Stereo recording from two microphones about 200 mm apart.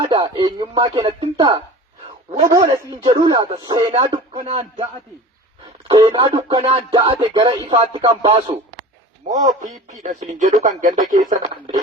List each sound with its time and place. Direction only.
0.0 s music: 25° right (ahead or behind)
5.9 s music: 20° right (ahead or behind)
9.2 s speech: 35° right (ahead or behind)